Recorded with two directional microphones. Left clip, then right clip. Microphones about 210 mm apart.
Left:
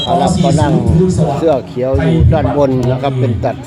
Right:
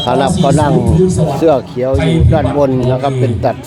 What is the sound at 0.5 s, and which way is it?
Speech, 10° right (ahead or behind).